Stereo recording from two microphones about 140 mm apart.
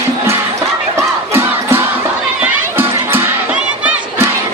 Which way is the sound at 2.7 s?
15° right (ahead or behind).